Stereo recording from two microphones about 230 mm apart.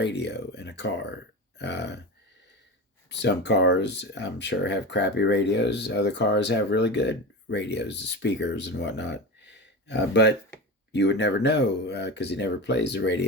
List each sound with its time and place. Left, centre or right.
0.0 s speech: left
3.1 s speech: left